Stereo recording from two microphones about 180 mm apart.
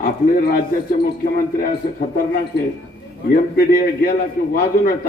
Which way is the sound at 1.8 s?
55° left (ahead or behind).